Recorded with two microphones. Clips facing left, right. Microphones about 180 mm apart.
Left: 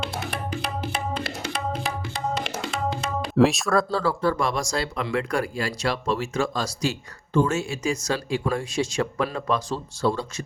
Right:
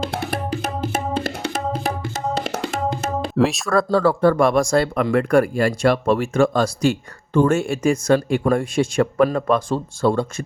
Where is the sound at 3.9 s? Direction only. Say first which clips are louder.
Right 7 dB; 55° right (ahead or behind).